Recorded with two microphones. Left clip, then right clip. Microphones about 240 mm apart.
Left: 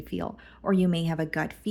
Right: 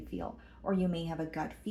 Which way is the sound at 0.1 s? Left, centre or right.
Left.